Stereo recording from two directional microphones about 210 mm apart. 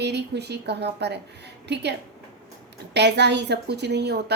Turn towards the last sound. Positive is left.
turn(degrees=-50)  # may be behind; listen again after turning